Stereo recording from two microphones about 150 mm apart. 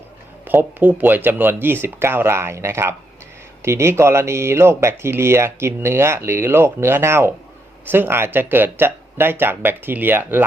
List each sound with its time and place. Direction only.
0.4 s speech: 10° right (ahead or behind)